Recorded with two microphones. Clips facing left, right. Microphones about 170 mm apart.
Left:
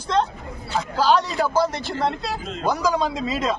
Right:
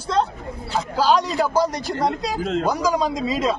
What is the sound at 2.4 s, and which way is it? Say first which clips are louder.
Speech: right 10 dB; 70° right (ahead or behind).